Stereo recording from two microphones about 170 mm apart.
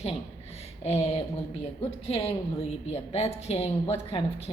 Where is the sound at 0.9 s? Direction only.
35° left (ahead or behind).